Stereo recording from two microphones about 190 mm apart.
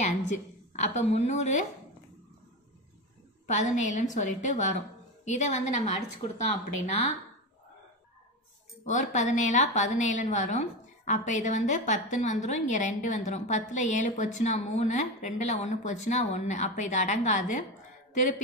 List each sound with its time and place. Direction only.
0.7 s a woman's voice: 35° left (ahead or behind)
3.4 s a woman's voice: 40° left (ahead or behind)
8.9 s a woman's voice: 40° left (ahead or behind)